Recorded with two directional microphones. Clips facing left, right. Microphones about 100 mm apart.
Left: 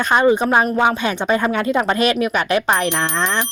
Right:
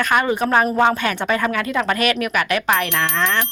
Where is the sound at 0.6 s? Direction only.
10° left (ahead or behind); by 3.4 s 25° left (ahead or behind).